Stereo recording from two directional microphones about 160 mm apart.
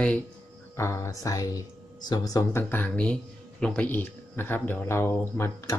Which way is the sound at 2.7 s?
10° left (ahead or behind).